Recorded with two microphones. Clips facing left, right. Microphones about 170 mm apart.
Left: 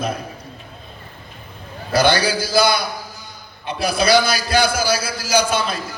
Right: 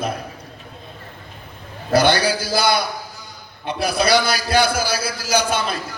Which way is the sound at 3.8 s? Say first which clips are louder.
Left 2 dB; 55° right (ahead or behind).